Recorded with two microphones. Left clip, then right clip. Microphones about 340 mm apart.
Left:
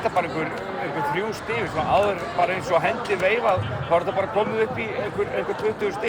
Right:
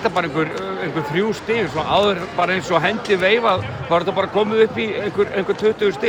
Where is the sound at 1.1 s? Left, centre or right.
Right.